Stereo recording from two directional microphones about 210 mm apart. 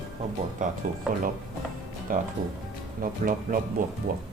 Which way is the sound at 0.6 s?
40° right (ahead or behind).